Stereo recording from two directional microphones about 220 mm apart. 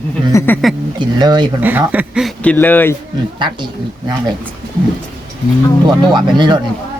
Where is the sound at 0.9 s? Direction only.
20° right (ahead or behind).